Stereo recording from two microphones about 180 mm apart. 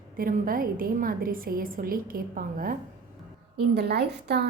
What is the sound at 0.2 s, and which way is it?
A woman's voice, 50° right (ahead or behind).